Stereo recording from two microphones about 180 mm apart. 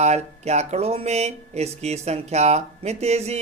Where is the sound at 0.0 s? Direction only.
40° right (ahead or behind).